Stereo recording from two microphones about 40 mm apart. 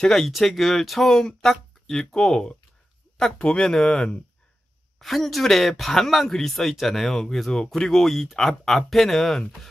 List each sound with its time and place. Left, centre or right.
0.0 s speech: centre
3.9 s speech: left
4.9 s speech: centre